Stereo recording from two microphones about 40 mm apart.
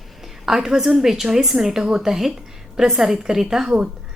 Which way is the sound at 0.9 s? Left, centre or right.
Centre.